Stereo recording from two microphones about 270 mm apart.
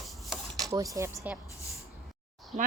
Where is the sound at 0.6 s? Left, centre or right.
Centre.